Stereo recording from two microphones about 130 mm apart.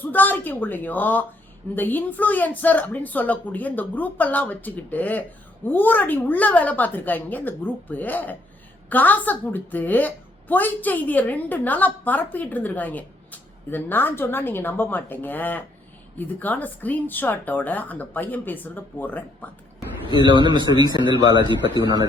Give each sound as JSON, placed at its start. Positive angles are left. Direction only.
{"t": 0.0, "sound": "a woman's voice", "side_deg": 15}
{"t": 20.3, "sound": "a man's voice", "side_deg": -40}